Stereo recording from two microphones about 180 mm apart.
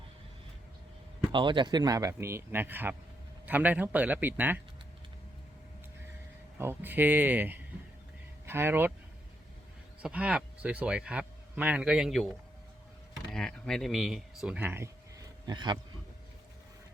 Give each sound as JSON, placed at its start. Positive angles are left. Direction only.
{"t": 1.3, "sound": "a man's voice", "side_deg": -25}
{"t": 6.6, "sound": "a man's voice", "side_deg": -10}
{"t": 10.0, "sound": "speech", "side_deg": -5}
{"t": 13.3, "sound": "speech", "side_deg": 5}
{"t": 15.4, "sound": "speech", "side_deg": -25}